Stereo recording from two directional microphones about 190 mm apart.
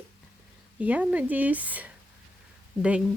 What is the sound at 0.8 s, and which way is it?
Speech, 5° right (ahead or behind).